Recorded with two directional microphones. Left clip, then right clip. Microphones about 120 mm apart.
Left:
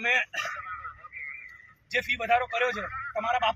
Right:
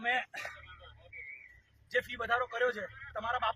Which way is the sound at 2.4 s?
25° right (ahead or behind).